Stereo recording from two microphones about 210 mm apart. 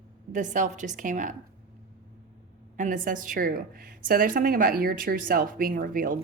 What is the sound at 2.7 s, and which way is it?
Speech, 40° right (ahead or behind).